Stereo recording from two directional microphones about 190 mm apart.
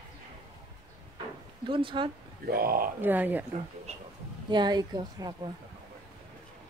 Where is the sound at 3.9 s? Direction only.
35° right (ahead or behind).